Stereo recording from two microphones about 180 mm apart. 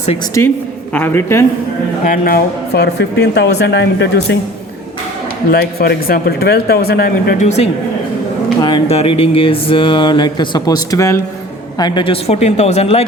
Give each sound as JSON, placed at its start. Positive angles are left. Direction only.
{"t": 0.4, "sound": "a man's voice", "side_deg": 15}
{"t": 2.0, "sound": "speech", "side_deg": 55}
{"t": 5.5, "sound": "speech", "side_deg": 60}
{"t": 7.3, "sound": "speech", "side_deg": 40}